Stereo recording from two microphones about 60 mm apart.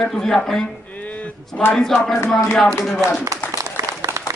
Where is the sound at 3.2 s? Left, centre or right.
Right.